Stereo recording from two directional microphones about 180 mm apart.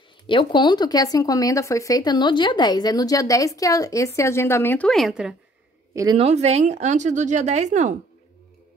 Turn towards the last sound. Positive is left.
turn(degrees=-40)  # may be behind; listen again after turning